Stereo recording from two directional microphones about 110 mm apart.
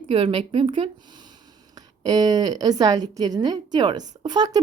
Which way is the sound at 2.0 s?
35° right (ahead or behind).